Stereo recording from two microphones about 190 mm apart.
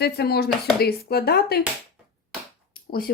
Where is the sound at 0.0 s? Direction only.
55° left (ahead or behind).